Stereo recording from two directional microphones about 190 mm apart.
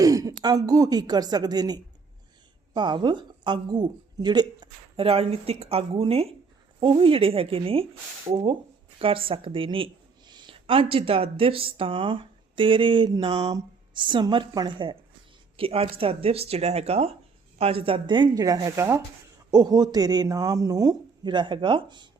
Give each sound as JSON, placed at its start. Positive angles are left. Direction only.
{"t": 0.0, "sound": "a woman's voice", "side_deg": -20}